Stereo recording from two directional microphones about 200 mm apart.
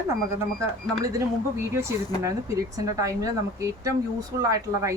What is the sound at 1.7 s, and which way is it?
Speech, 15° right (ahead or behind).